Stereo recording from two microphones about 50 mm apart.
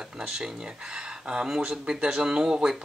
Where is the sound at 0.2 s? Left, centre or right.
Centre.